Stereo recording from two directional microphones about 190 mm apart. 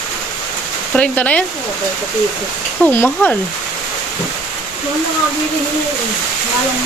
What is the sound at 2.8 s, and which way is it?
Speech, 10° left (ahead or behind).